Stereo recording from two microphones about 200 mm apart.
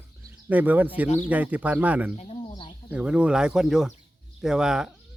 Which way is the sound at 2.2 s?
25° left (ahead or behind).